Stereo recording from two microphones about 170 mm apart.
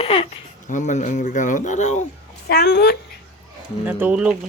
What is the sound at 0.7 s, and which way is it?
Speech, 45° left (ahead or behind).